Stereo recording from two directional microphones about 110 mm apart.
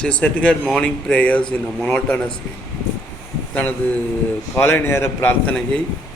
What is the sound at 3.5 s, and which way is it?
A man's voice, 15° left (ahead or behind).